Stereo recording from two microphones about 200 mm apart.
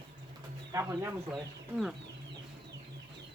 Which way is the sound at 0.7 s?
15° right (ahead or behind).